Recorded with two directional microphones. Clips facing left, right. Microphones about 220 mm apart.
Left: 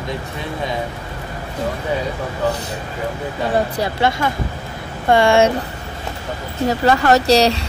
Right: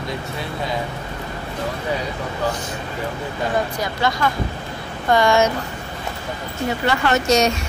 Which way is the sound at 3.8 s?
25° left (ahead or behind).